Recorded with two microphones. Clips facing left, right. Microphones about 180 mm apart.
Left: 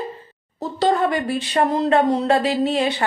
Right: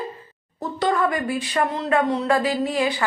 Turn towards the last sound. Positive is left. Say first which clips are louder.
# left 3 dB
turn(degrees=25)  # may be behind; listen again after turning